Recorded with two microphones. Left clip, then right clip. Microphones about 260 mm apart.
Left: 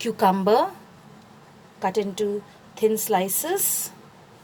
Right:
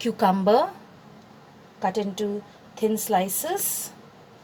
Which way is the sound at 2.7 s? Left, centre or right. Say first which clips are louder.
Left 3 dB; left.